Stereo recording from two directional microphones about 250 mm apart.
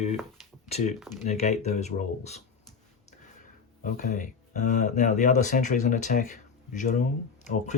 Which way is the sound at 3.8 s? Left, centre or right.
Left.